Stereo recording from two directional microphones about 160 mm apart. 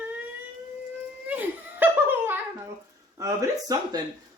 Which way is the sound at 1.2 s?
10° right (ahead or behind).